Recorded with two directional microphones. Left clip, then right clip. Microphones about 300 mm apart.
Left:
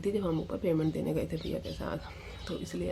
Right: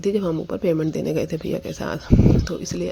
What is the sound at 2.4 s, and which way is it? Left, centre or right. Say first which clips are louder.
Speech: right 10 dB; right.